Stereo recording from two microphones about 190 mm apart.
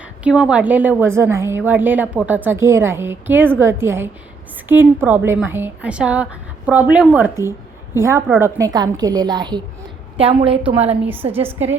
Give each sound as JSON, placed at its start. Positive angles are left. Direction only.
{"t": 0.0, "sound": "a woman's voice", "side_deg": -5}
{"t": 11.1, "sound": "a woman's voice", "side_deg": -10}